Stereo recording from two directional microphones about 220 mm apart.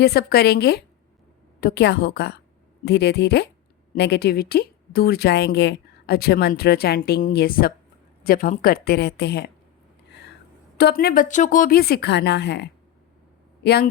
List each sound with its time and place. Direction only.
0.0 s speech: 45° left (ahead or behind)
10.8 s speech: 45° left (ahead or behind)